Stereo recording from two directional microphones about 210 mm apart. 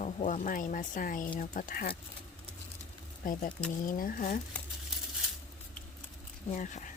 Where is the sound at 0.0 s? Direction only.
35° left (ahead or behind).